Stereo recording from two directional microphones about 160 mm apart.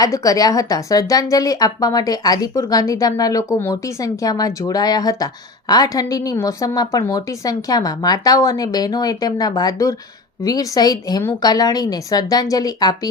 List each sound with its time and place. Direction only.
0.0 s a woman's voice: 20° left (ahead or behind)